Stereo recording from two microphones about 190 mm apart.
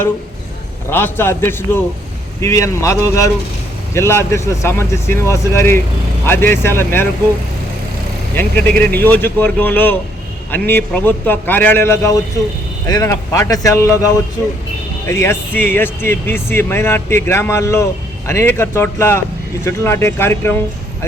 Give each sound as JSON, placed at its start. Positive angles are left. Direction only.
{"t": 0.9, "sound": "speech", "side_deg": 10}
{"t": 8.4, "sound": "speech", "side_deg": 10}